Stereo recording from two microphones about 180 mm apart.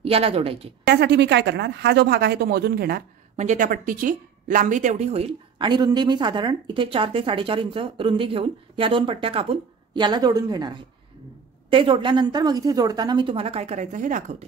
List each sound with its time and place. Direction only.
0.0 s a woman's voice: 35° right (ahead or behind)
0.8 s speech: 65° right (ahead or behind)
3.3 s speech: 45° right (ahead or behind); by 10.7 s 20° right (ahead or behind)
11.7 s speech: 30° right (ahead or behind); by 14.2 s 45° right (ahead or behind)